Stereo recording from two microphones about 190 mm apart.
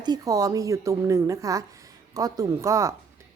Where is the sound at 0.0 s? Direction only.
20° right (ahead or behind).